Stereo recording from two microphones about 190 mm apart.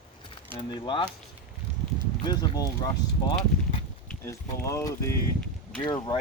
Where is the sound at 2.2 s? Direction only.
25° left (ahead or behind).